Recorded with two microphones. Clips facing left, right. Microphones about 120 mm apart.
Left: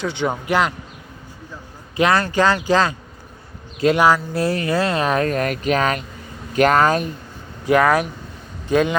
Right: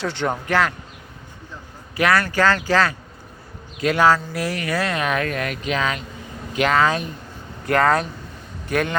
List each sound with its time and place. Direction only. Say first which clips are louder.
0.0 s speech: left 1 dB; centre (ahead or behind)
0.4 s speech: left 1 dB; 15° left (ahead or behind)
2.0 s speech: left 2 dB; 25° left (ahead or behind)
3.9 s speech: even; 15° left (ahead or behind)
4.3 s speech: left 5 dB; 30° left (ahead or behind)
7.6 s speech: left 3 dB; 15° left (ahead or behind)